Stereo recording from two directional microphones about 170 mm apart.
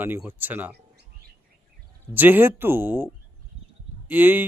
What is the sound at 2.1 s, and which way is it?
Speech, 10° right (ahead or behind).